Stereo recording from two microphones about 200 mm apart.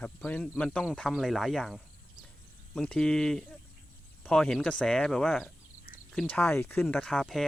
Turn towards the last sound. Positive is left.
turn(degrees=0)  # may be behind; listen again after turning